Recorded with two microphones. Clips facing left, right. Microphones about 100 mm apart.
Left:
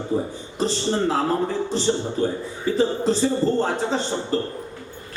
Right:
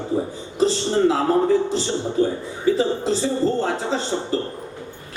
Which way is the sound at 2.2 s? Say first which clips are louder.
Right 3 dB; 35° left (ahead or behind).